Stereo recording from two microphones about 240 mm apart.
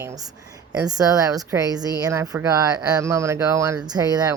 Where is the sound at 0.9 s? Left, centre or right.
Centre.